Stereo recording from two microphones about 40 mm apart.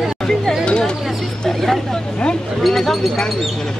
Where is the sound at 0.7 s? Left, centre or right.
Left.